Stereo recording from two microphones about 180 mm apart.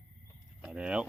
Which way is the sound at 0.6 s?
5° right (ahead or behind).